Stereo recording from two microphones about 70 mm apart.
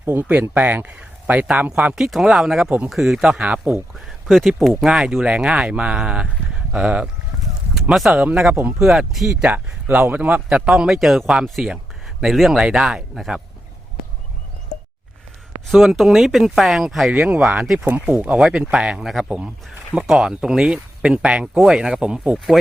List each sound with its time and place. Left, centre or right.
0.0 s speech: right
2.0 s speech: centre
2.6 s speech: right
2.9 s speech: centre
4.8 s speech: centre
9.4 s speech: right
10.7 s speech: centre
15.6 s speech: centre
17.1 s speech: centre
17.4 s speech: centre
17.8 s speech: right
18.1 s speech: centre
20.1 s speech: centre